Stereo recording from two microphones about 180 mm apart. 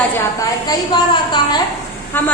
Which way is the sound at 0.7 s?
25° left (ahead or behind).